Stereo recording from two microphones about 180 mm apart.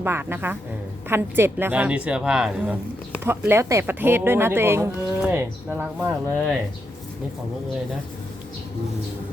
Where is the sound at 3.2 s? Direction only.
15° right (ahead or behind).